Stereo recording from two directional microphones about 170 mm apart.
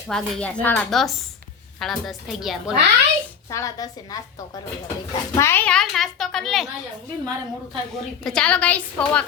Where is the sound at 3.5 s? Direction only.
20° left (ahead or behind).